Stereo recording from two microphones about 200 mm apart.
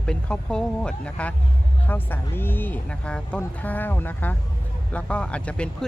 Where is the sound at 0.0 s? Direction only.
5° left (ahead or behind).